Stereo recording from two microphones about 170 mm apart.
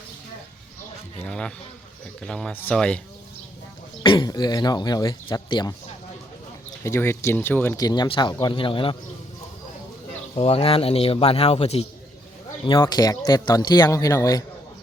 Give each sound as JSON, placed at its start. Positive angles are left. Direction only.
{"t": 1.2, "sound": "speech", "side_deg": 5}
{"t": 4.0, "sound": "speech", "side_deg": 25}
{"t": 6.8, "sound": "speech", "side_deg": 15}
{"t": 10.3, "sound": "a man's voice", "side_deg": 35}
{"t": 12.6, "sound": "speech", "side_deg": 25}